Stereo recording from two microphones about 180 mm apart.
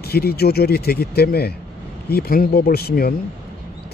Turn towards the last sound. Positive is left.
turn(degrees=55)  # may be behind; listen again after turning